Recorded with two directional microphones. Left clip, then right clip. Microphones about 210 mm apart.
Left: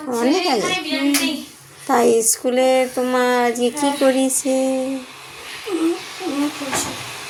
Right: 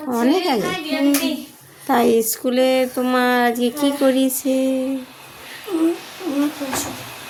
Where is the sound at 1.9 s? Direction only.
35° right (ahead or behind).